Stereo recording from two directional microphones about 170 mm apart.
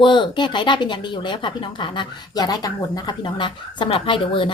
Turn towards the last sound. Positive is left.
turn(degrees=30)  # may be behind; listen again after turning